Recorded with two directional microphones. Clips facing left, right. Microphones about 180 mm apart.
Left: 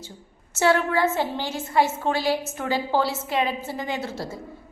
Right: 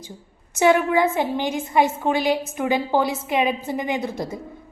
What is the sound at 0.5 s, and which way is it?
A woman's voice, 15° right (ahead or behind).